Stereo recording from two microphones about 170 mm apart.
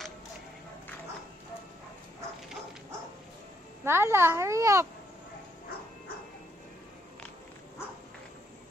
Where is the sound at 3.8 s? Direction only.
15° right (ahead or behind).